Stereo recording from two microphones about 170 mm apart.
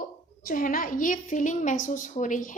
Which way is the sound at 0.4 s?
55° left (ahead or behind).